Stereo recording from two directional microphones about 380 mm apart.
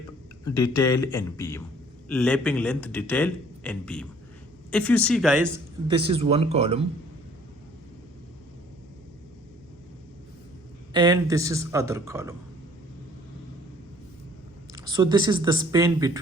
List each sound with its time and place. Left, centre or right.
0.4 s a man's voice: centre
5.9 s speech: centre
10.9 s speech: centre
14.7 s speech: centre